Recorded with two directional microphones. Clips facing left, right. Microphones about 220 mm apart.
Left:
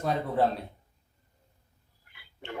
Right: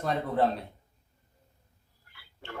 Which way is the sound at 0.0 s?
Centre (ahead or behind).